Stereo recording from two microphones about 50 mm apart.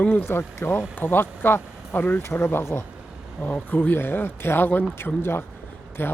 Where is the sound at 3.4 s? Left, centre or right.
Left.